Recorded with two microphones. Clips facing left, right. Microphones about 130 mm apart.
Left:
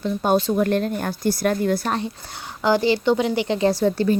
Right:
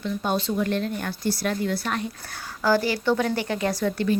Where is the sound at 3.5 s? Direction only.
30° left (ahead or behind).